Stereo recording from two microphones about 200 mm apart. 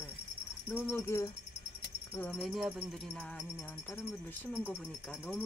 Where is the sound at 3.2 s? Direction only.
5° left (ahead or behind).